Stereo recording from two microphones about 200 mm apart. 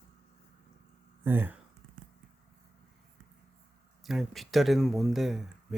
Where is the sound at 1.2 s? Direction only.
10° right (ahead or behind).